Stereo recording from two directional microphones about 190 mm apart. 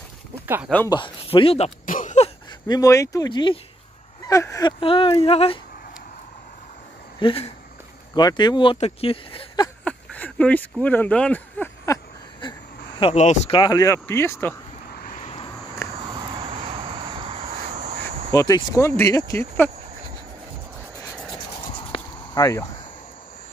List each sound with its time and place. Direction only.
0.8 s speech: 25° left (ahead or behind)
1.9 s a sound: 40° left (ahead or behind)
2.7 s speech: 15° left (ahead or behind)
7.2 s speech: 30° left (ahead or behind)
9.8 s a sound: 5° left (ahead or behind)
13.0 s speech: 35° left (ahead or behind)
13.6 s speech: 20° left (ahead or behind)
15.0 s vehicle: 50° left (ahead or behind)
15.2 s a sound: 30° left (ahead or behind)
15.8 s cricket: 15° left (ahead or behind)
16.3 s vehicle: 30° right (ahead or behind)
18.3 s speech: 20° left (ahead or behind)
21.9 s a sound: 20° left (ahead or behind)